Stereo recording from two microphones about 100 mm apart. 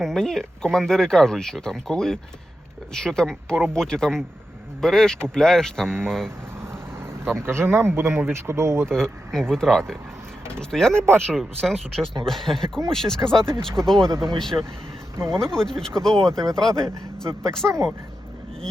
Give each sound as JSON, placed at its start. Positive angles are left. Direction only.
{"t": 0.0, "sound": "speech", "side_deg": 5}
{"t": 7.3, "sound": "speech", "side_deg": -25}
{"t": 8.9, "sound": "speech", "side_deg": 5}
{"t": 10.9, "sound": "speech", "side_deg": -25}
{"t": 11.3, "sound": "speech", "side_deg": 0}